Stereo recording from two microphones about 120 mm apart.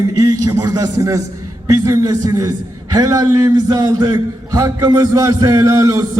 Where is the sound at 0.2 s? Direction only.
30° right (ahead or behind).